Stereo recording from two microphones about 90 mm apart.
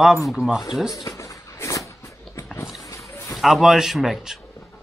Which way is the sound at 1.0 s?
35° left (ahead or behind).